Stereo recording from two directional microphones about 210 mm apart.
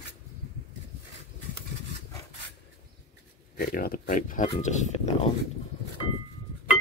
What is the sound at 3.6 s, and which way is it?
Speech, 45° left (ahead or behind).